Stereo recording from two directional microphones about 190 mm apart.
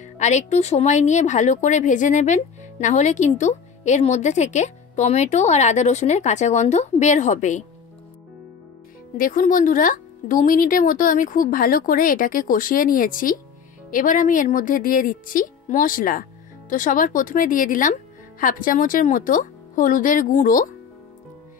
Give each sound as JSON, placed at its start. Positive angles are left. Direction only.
{"t": 0.0, "sound": "speech", "side_deg": 40}
{"t": 9.1, "sound": "speech", "side_deg": 45}